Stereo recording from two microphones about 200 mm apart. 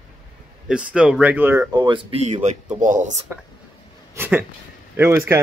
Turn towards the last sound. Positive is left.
turn(degrees=-10)  # may be behind; listen again after turning